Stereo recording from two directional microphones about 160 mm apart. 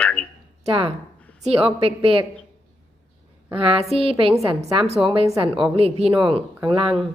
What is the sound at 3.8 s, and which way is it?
Speech, 40° right (ahead or behind).